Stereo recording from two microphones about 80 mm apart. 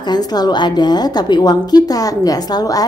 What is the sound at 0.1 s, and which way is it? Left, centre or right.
A woman's voice, left.